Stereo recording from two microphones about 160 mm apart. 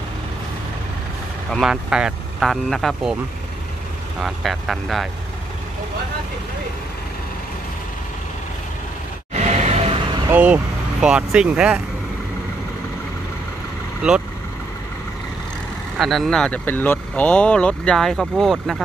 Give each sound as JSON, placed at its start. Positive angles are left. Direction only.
{"t": 1.5, "sound": "speech", "side_deg": -5}
{"t": 4.2, "sound": "speech", "side_deg": 0}
{"t": 9.3, "sound": "music", "side_deg": -45}
{"t": 10.3, "sound": "speech", "side_deg": -10}
{"t": 14.0, "sound": "speech", "side_deg": -5}
{"t": 16.0, "sound": "speech", "side_deg": 0}